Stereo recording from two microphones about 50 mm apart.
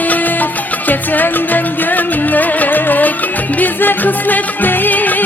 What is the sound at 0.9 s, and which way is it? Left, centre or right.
Music, left.